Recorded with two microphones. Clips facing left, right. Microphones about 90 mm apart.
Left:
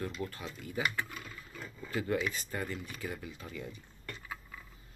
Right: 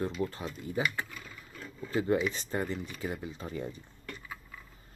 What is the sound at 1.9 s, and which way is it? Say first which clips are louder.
Speech: right 5 dB; 25° right (ahead or behind).